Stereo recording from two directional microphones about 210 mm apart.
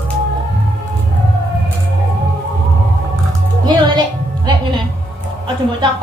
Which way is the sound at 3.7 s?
20° right (ahead or behind).